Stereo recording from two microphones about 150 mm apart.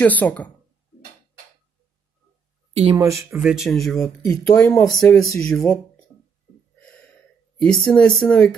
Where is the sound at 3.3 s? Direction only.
Centre (ahead or behind).